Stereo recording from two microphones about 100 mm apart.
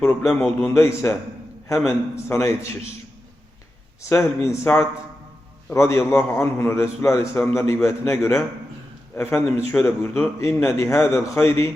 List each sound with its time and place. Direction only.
0.2 s a man's voice: centre (ahead or behind)
0.6 s a man's voice: 25° left (ahead or behind)
4.1 s a man's voice: 30° left (ahead or behind)